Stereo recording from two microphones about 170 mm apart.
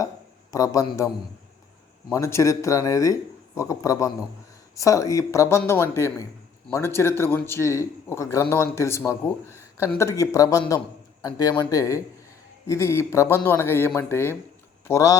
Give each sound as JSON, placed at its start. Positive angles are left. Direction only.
{"t": 0.5, "sound": "a man's voice", "side_deg": 20}